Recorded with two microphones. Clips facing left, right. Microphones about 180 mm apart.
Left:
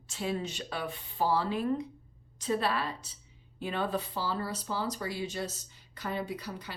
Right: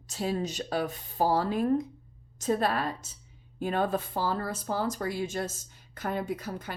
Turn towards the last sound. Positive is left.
turn(degrees=-50)  # may be behind; listen again after turning